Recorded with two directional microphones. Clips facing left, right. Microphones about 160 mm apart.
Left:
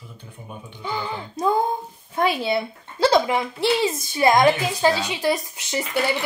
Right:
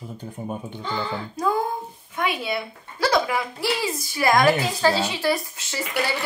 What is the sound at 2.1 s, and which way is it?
Speech, 30° left (ahead or behind).